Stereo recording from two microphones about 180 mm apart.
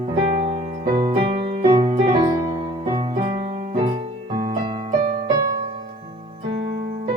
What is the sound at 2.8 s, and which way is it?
Music, 25° right (ahead or behind).